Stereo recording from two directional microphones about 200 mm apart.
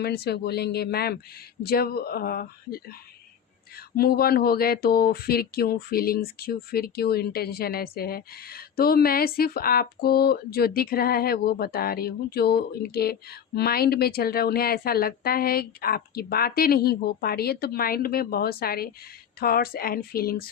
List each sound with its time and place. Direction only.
0.0 s speech: 55° left (ahead or behind)
3.9 s speech: 50° left (ahead or behind)